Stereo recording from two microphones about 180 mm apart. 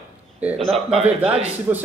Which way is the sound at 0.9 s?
35° right (ahead or behind).